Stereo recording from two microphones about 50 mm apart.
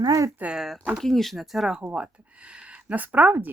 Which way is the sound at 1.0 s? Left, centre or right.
Centre.